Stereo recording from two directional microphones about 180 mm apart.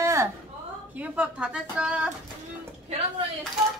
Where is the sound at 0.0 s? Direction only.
15° right (ahead or behind).